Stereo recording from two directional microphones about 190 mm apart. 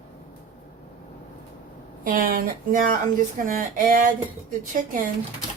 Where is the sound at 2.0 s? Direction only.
45° right (ahead or behind).